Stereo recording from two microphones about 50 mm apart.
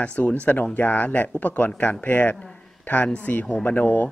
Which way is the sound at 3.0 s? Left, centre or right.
Left.